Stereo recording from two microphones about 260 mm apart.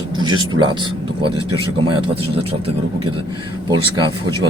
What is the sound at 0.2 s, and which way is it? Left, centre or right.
Speech, centre.